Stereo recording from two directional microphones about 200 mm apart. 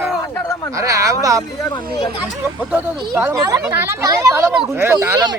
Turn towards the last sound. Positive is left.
turn(degrees=-10)  # may be behind; listen again after turning